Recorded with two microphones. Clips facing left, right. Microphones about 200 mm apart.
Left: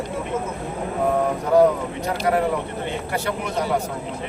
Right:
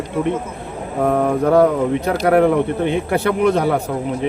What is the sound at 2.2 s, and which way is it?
Speech, 65° right (ahead or behind).